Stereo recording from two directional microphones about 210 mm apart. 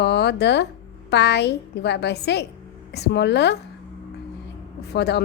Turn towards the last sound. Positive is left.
turn(degrees=55)  # may be behind; listen again after turning